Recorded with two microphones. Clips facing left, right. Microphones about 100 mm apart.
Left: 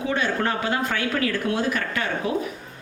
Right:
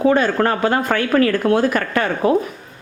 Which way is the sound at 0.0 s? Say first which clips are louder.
Right 9 dB; 50° right (ahead or behind).